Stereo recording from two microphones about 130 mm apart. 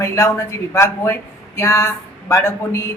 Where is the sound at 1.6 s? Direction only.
20° left (ahead or behind).